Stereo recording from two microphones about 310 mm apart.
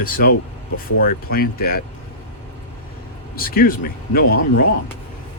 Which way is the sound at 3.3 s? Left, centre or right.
Left.